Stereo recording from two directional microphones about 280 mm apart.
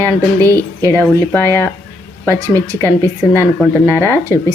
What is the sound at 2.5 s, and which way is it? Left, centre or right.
Speech, centre.